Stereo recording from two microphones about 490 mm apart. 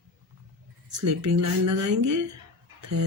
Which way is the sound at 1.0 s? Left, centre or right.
Right.